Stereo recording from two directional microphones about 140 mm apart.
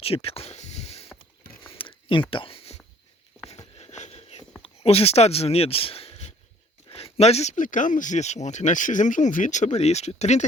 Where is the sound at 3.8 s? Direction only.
55° left (ahead or behind).